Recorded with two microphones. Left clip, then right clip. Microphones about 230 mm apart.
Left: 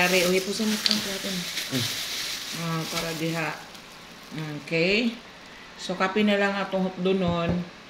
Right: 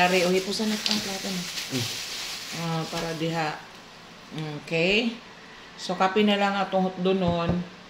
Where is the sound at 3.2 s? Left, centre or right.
Centre.